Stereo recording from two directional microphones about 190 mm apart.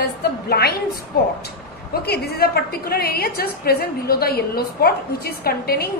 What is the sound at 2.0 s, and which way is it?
A woman's voice, 55° left (ahead or behind).